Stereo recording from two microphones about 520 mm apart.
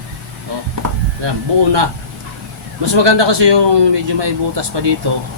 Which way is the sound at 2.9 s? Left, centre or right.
Right.